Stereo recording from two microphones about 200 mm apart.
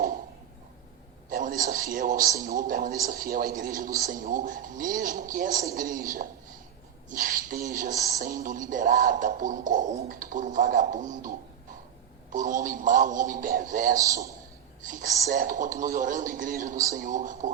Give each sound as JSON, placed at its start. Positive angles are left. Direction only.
{"t": 1.3, "sound": "a sound", "side_deg": -40}
{"t": 1.7, "sound": "a man's voice", "side_deg": -45}
{"t": 7.9, "sound": "a man's voice", "side_deg": -15}
{"t": 8.2, "sound": "speech", "side_deg": -40}
{"t": 14.0, "sound": "a man's voice", "side_deg": -15}
{"t": 15.3, "sound": "speech", "side_deg": -40}